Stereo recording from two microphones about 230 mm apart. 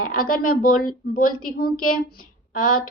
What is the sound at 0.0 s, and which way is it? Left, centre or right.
A woman's voice, left.